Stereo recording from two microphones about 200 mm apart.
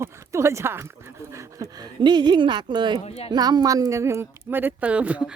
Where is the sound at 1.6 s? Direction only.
25° right (ahead or behind).